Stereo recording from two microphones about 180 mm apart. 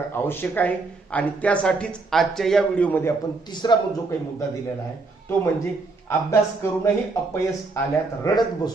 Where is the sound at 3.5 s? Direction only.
25° left (ahead or behind).